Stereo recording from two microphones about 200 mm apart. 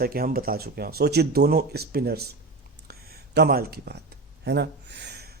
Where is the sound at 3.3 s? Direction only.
50° right (ahead or behind).